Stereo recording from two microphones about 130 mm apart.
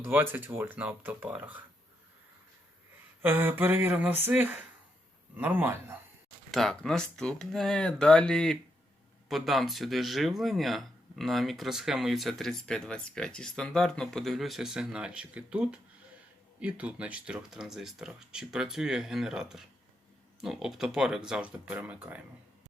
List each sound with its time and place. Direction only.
0.0 s speech: 15° right (ahead or behind)
3.2 s speech: 15° right (ahead or behind)
6.5 s speech: 5° left (ahead or behind)